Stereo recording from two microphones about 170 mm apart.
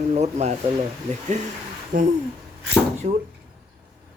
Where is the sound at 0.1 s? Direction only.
40° right (ahead or behind).